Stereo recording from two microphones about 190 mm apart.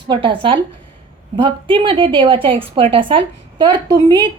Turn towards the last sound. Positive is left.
turn(degrees=-20)  # may be behind; listen again after turning